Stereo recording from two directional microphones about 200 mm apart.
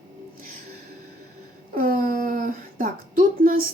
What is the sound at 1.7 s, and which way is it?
Speech, 45° right (ahead or behind).